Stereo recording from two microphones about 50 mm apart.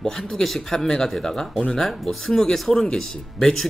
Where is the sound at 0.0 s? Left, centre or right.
Centre.